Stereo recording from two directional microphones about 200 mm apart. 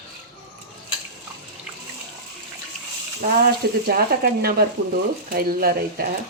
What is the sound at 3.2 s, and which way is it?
Speech, 45° right (ahead or behind).